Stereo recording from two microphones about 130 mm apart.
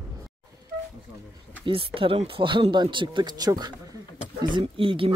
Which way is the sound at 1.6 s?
45° right (ahead or behind).